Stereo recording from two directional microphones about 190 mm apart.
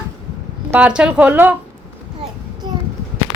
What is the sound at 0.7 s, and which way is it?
Speech, 5° right (ahead or behind).